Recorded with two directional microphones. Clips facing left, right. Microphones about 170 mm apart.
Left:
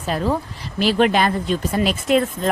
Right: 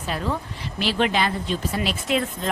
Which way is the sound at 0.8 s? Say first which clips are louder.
Left 6 dB; 45° left (ahead or behind).